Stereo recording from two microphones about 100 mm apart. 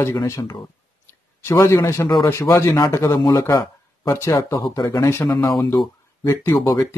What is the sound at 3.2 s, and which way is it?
Speech, 45° left (ahead or behind).